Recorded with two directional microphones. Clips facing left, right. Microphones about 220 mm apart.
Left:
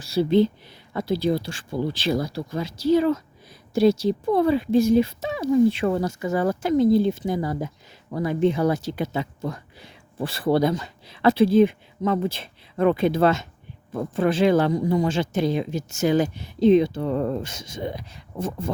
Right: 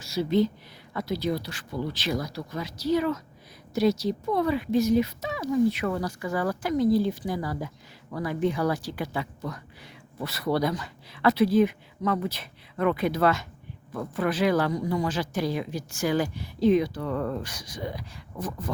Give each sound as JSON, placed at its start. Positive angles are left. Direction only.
{"t": 0.0, "sound": "speech", "side_deg": 30}